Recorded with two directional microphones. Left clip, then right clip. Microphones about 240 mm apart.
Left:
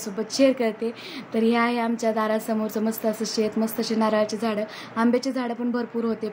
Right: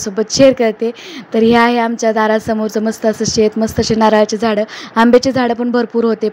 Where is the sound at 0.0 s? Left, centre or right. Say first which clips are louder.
Right 11 dB; right.